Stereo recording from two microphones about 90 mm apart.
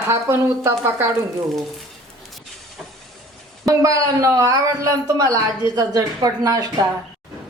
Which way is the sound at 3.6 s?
40° right (ahead or behind).